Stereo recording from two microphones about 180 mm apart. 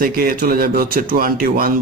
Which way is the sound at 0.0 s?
55° right (ahead or behind).